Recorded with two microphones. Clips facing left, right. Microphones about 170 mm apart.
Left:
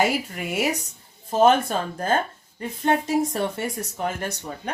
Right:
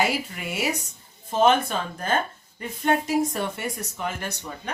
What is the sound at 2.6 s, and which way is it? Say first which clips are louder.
A woman's voice: left 1 dB; 30° left (ahead or behind).